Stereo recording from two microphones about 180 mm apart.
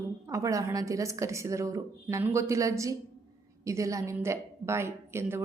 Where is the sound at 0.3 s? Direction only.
20° right (ahead or behind).